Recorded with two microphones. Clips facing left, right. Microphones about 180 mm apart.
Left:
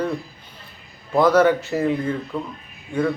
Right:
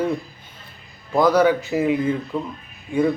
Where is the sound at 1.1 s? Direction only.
Centre (ahead or behind).